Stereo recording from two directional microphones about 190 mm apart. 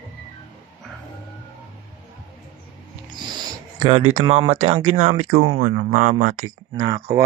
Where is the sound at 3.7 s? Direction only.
30° right (ahead or behind).